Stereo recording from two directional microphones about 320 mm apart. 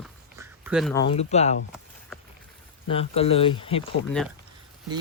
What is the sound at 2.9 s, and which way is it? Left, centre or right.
Speech, centre.